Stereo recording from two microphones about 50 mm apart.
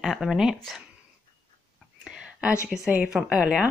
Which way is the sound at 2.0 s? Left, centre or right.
Centre.